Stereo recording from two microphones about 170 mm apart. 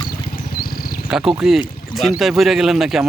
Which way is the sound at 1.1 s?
5° right (ahead or behind).